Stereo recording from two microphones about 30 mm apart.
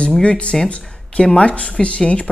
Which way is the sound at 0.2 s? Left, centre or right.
Left.